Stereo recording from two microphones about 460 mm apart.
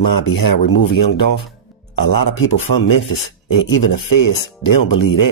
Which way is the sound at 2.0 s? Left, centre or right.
Left.